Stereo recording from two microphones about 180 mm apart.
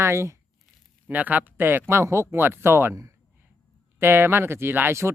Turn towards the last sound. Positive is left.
turn(degrees=-15)  # may be behind; listen again after turning